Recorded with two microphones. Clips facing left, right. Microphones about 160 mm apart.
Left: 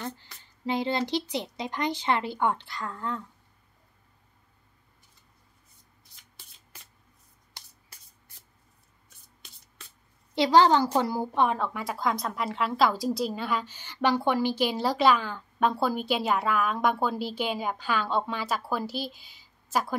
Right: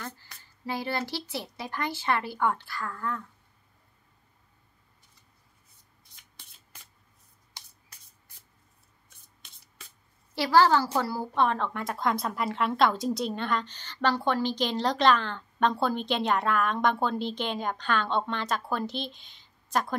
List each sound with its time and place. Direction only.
0.0 s speech: 20° left (ahead or behind)
10.3 s a woman's voice: 20° left (ahead or behind)